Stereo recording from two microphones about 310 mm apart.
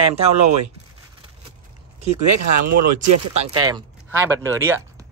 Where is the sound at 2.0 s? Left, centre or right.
Right.